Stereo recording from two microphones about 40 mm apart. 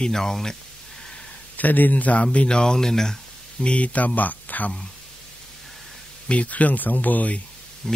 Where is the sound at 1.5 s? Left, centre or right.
Left.